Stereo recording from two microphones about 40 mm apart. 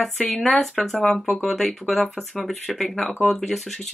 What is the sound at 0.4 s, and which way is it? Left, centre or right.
Speech, centre.